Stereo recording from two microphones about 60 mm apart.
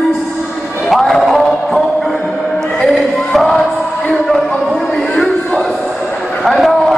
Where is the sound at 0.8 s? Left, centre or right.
Centre.